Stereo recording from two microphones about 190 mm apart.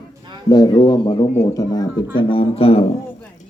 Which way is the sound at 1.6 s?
20° left (ahead or behind).